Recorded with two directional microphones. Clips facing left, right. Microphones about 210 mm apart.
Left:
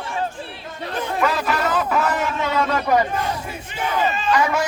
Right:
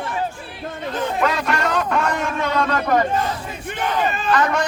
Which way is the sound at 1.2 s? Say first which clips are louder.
Left 1 dB; 5° left (ahead or behind).